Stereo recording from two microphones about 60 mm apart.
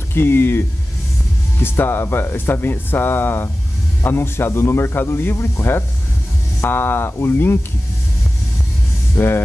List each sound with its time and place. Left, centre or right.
0.1 s speech: left
9.1 s speech: left